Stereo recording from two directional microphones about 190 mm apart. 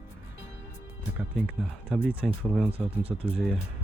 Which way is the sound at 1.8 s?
5° right (ahead or behind).